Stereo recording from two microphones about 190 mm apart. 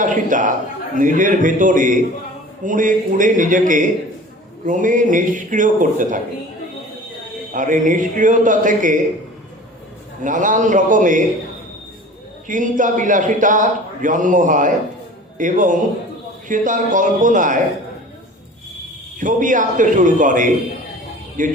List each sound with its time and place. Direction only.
0.0 s a man's voice: 45° right (ahead or behind)
7.5 s a man's voice: 45° right (ahead or behind)
10.2 s a man's voice: 45° right (ahead or behind)
12.5 s a man's voice: 45° right (ahead or behind)
19.2 s a man's voice: 45° right (ahead or behind)